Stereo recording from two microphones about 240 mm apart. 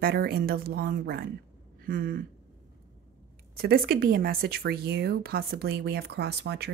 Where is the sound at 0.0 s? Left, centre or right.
Right.